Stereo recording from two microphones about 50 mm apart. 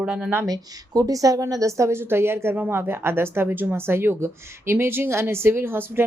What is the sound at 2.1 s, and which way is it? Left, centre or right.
A woman's voice, right.